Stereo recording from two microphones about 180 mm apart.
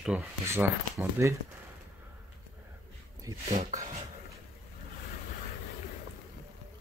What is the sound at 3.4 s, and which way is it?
Speech, 35° right (ahead or behind).